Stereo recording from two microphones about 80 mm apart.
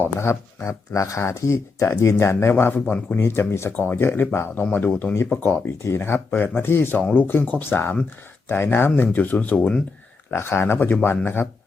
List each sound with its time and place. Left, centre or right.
0.2 s speech: left; by 3.2 s centre
3.2 s speech: left; by 9.8 s centre
10.3 s speech: left
10.8 s speech: centre